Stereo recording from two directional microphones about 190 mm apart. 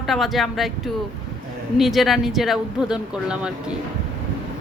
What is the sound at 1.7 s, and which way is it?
A woman's voice, centre (ahead or behind).